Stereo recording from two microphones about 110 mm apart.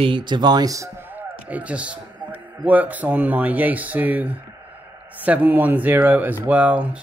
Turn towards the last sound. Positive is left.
turn(degrees=-15)  # may be behind; listen again after turning